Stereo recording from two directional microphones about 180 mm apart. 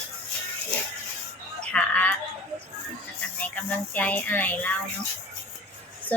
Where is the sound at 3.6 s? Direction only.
10° left (ahead or behind).